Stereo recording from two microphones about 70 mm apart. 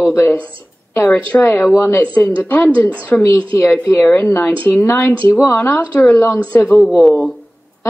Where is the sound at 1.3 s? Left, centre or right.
Left.